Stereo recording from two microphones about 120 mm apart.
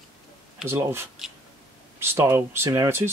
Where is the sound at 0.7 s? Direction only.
20° right (ahead or behind).